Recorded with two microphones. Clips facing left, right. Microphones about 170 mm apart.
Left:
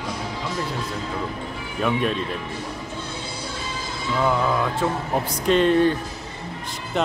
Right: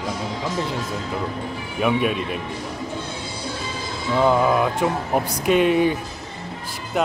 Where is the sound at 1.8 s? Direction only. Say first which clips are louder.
Right 2 dB; 10° right (ahead or behind).